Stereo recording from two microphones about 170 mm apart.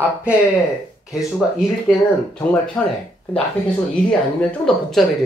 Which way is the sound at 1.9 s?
5° left (ahead or behind).